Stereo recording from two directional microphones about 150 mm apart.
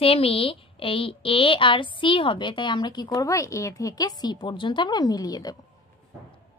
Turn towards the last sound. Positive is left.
turn(degrees=25)  # may be behind; listen again after turning